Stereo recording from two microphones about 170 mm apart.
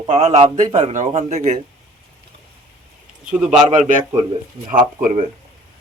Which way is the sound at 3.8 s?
45° right (ahead or behind).